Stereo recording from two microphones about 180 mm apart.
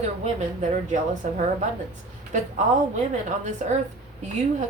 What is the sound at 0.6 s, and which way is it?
Speech, 45° right (ahead or behind).